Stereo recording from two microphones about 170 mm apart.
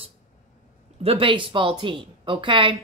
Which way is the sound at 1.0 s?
30° right (ahead or behind).